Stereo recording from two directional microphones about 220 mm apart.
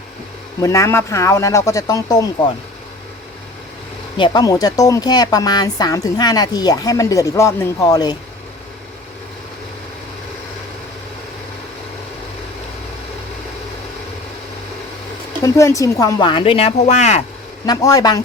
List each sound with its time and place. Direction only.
0.6 s speech: 15° left (ahead or behind)
4.2 s speech: 20° left (ahead or behind)
15.4 s speech: 15° left (ahead or behind); by 17.2 s 30° left (ahead or behind)
17.7 s speech: 15° left (ahead or behind)